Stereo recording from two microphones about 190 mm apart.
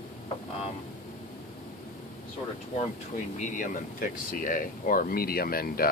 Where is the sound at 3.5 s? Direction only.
45° left (ahead or behind).